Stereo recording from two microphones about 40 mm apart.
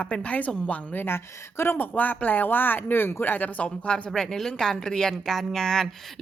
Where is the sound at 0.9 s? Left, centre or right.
Left.